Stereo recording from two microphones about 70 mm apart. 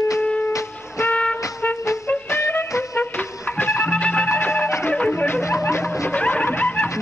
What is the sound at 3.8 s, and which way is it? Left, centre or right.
Music, centre.